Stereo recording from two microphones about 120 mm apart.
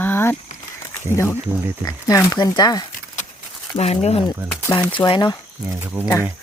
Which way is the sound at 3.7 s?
60° left (ahead or behind).